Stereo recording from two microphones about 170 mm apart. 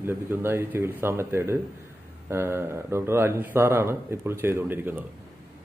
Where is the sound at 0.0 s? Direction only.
15° right (ahead or behind).